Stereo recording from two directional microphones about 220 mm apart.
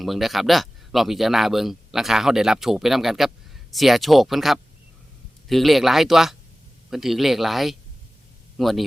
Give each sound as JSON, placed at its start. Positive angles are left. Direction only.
{"t": 0.0, "sound": "speech", "side_deg": 0}